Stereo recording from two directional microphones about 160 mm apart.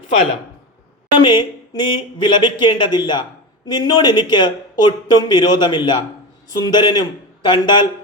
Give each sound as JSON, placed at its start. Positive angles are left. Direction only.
{"t": 1.2, "sound": "speech", "side_deg": 30}